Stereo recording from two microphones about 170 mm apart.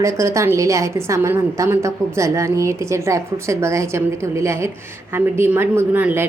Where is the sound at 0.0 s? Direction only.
15° right (ahead or behind).